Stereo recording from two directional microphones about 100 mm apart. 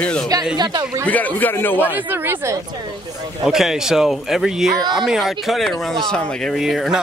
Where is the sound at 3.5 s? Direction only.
5° right (ahead or behind).